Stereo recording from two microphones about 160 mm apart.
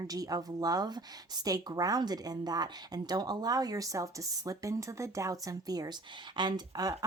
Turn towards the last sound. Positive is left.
turn(degrees=-25)  # may be behind; listen again after turning